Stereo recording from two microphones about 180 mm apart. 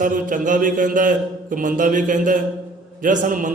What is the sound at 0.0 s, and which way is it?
A man's voice, 50° right (ahead or behind).